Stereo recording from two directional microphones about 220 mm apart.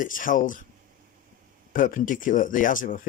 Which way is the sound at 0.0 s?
35° left (ahead or behind).